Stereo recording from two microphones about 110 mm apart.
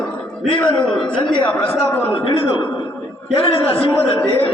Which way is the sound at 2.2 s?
55° left (ahead or behind).